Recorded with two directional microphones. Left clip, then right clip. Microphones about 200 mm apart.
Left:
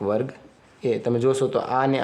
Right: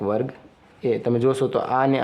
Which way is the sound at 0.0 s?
10° right (ahead or behind).